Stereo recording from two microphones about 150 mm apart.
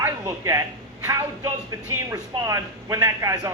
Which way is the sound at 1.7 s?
20° right (ahead or behind).